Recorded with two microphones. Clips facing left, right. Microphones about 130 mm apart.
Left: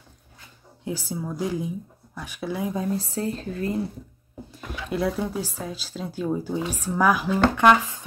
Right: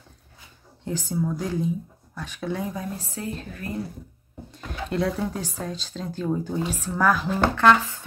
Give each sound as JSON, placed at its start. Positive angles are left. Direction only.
{"t": 0.8, "sound": "speech", "side_deg": 10}
{"t": 2.7, "sound": "speech", "side_deg": 30}
{"t": 4.5, "sound": "speech", "side_deg": 5}